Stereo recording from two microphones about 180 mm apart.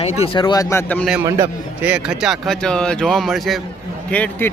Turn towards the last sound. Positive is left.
turn(degrees=10)  # may be behind; listen again after turning